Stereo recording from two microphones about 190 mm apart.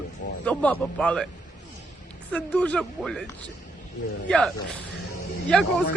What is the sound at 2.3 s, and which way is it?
Speech, 5° left (ahead or behind).